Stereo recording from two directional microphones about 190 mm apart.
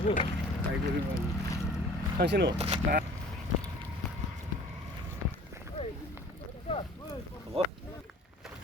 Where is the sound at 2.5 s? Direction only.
35° right (ahead or behind).